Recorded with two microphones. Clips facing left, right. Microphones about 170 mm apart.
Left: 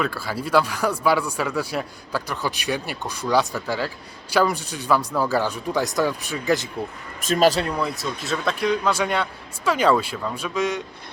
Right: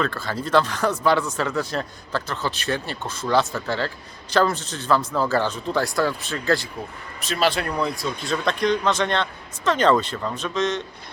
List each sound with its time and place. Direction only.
0.0 s speech: 10° left (ahead or behind)
7.2 s a man's voice: 45° left (ahead or behind)
7.8 s speech: 5° left (ahead or behind)